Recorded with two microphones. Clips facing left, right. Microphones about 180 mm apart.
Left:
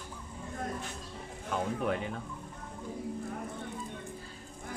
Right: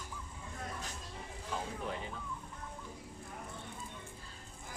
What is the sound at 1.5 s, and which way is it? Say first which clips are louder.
Speech: left 8 dB; 65° left (ahead or behind).